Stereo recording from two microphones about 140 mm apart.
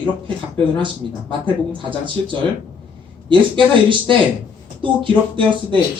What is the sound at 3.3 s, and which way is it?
Speech, 35° right (ahead or behind).